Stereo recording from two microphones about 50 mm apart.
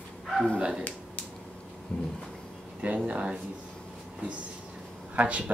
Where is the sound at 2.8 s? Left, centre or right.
Right.